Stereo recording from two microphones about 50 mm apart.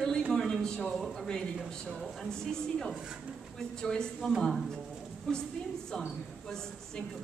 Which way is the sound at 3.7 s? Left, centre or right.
Centre.